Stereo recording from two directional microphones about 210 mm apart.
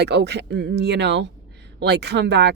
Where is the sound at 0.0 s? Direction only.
55° right (ahead or behind).